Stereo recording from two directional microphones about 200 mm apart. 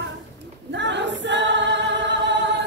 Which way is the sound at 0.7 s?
60° right (ahead or behind).